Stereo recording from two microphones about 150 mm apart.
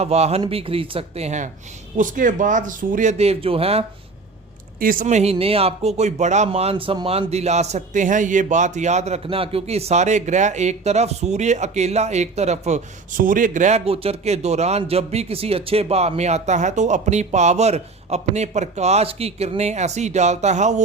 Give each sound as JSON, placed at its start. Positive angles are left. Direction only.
{"t": 0.0, "sound": "speech", "side_deg": -45}
{"t": 2.0, "sound": "speech", "side_deg": -60}
{"t": 4.8, "sound": "speech", "side_deg": -70}